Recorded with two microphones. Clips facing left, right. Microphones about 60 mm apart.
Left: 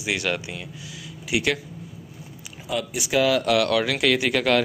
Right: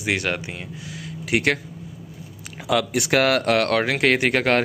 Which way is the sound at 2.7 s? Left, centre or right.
Right.